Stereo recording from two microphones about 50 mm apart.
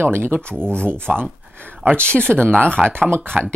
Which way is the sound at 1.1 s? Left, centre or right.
Right.